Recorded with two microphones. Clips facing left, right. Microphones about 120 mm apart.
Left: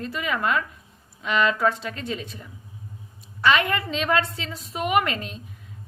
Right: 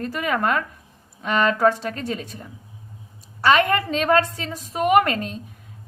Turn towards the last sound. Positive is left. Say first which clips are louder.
# right 5 dB
turn(degrees=-45)  # may be behind; listen again after turning